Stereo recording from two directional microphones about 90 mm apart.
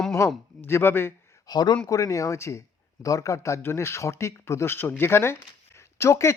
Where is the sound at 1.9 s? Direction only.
40° left (ahead or behind).